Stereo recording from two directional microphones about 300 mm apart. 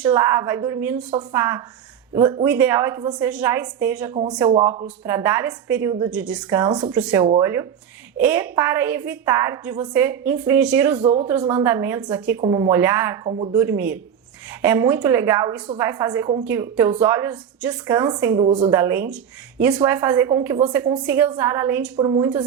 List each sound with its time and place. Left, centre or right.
0.0 s a woman's voice: centre
4.1 s a woman's voice: centre
10.9 s speech: right
11.3 s a woman's voice: centre